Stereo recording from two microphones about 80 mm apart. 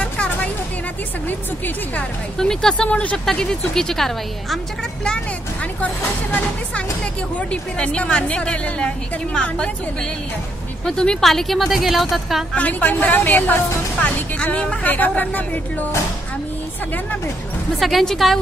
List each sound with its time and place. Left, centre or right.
0.0 s music: centre
2.3 s a woman's voice: centre
2.9 s a woman's voice: centre
3.3 s speech: centre
7.3 s a woman's voice: centre
10.9 s speech: centre
12.5 s a woman's voice: centre
17.7 s speech: centre